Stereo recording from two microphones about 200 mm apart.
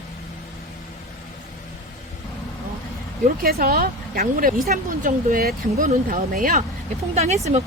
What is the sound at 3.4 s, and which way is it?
Speech, 45° right (ahead or behind).